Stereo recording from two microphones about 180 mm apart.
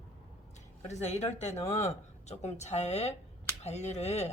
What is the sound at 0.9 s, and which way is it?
A woman's voice, 40° left (ahead or behind).